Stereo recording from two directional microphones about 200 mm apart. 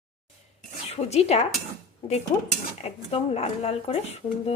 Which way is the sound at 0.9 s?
30° left (ahead or behind).